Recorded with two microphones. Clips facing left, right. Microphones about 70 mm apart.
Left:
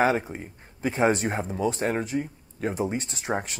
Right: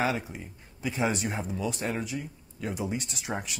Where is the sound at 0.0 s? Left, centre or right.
Left.